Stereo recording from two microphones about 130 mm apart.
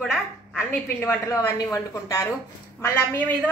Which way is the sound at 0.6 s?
20° left (ahead or behind).